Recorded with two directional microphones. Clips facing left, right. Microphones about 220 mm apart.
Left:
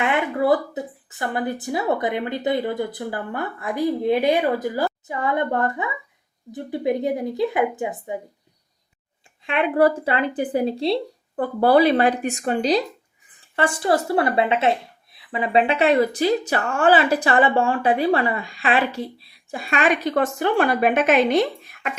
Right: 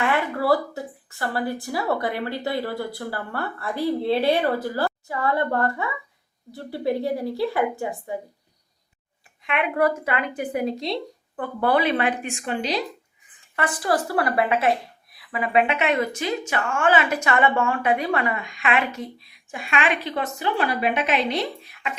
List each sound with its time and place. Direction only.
0.0 s speech: 20° left (ahead or behind)
9.4 s speech: 30° left (ahead or behind)
13.6 s speech: 25° left (ahead or behind); by 21.9 s 50° left (ahead or behind)